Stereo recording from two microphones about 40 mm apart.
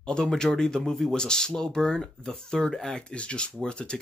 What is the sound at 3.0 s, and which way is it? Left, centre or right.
Speech, left.